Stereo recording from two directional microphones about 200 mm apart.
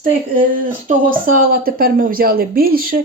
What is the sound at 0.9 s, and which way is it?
Speech, 45° right (ahead or behind).